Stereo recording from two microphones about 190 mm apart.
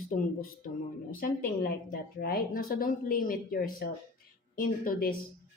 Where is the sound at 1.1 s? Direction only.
50° left (ahead or behind).